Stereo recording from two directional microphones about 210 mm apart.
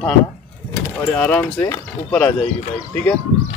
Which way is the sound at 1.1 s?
5° left (ahead or behind).